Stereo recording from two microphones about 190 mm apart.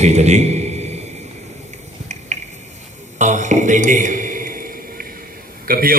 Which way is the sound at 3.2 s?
40° right (ahead or behind).